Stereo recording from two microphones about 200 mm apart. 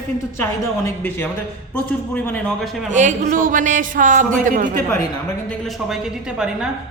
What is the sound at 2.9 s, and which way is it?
A woman's voice, 40° right (ahead or behind).